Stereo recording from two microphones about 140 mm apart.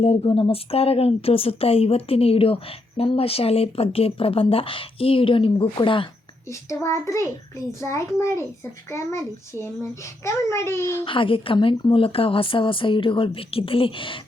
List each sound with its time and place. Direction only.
0.0 s speech: 40° left (ahead or behind)
6.5 s a child's voice: 20° left (ahead or behind)
11.0 s speech: 40° left (ahead or behind)